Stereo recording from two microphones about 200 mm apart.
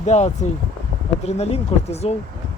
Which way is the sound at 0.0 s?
35° left (ahead or behind).